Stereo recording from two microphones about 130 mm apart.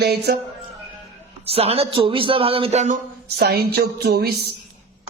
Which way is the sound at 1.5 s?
50° right (ahead or behind).